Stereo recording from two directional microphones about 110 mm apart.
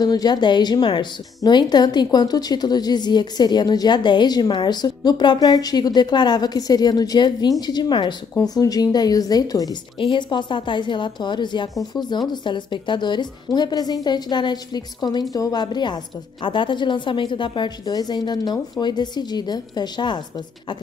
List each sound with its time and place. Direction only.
0.0 s a woman's voice: 40° left (ahead or behind)
10.1 s a woman's voice: 45° left (ahead or behind)